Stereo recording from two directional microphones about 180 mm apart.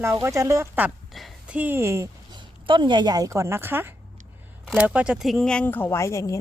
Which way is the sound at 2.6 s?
25° right (ahead or behind).